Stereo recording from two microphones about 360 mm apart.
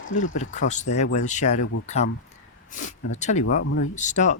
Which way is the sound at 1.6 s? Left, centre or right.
Left.